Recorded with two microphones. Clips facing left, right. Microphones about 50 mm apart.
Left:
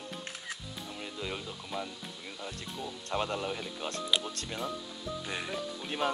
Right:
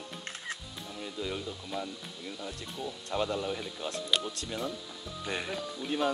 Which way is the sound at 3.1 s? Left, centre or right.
Left.